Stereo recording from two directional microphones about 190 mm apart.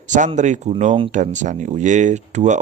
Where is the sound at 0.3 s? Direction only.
40° right (ahead or behind).